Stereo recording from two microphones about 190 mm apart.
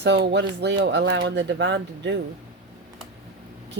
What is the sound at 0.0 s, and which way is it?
Speech, 65° right (ahead or behind).